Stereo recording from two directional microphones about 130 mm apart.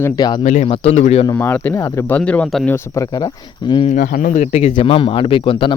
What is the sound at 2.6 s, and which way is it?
Speech, 20° left (ahead or behind).